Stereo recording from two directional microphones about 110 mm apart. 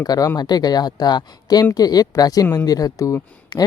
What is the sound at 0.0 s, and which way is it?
Speech, 35° left (ahead or behind).